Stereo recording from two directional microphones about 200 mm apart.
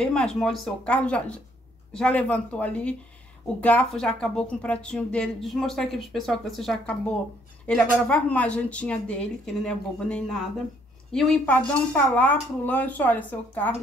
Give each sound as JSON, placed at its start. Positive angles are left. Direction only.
{"t": 0.0, "sound": "a woman's voice", "side_deg": 5}